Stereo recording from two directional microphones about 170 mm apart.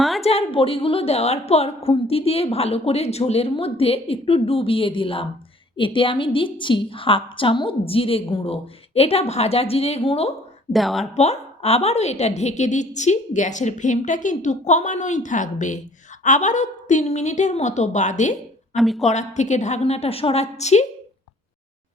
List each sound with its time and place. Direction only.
0.2 s a woman's voice: 35° left (ahead or behind)
10.7 s speech: centre (ahead or behind)
11.1 s a woman's voice: 40° left (ahead or behind)
18.8 s speech: centre (ahead or behind)
19.0 s a woman's voice: 45° left (ahead or behind)